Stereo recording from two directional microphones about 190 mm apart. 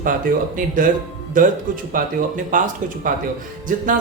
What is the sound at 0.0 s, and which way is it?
A man's voice, 45° right (ahead or behind).